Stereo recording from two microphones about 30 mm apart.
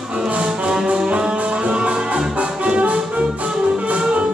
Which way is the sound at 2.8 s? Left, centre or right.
Right.